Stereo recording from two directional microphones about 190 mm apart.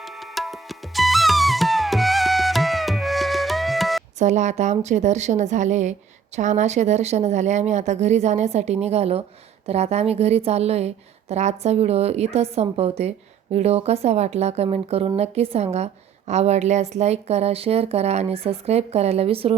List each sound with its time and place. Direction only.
0.0 s music: centre (ahead or behind)
4.2 s a woman's voice: 40° right (ahead or behind)